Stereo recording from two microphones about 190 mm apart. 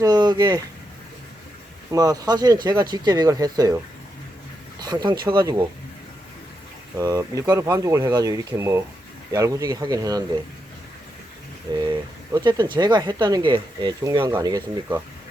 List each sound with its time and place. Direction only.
0.0 s speech: 20° right (ahead or behind)
1.9 s speech: 20° right (ahead or behind)
4.8 s speech: 20° right (ahead or behind)
7.0 s speech: 15° right (ahead or behind)
11.8 s speech: 20° right (ahead or behind)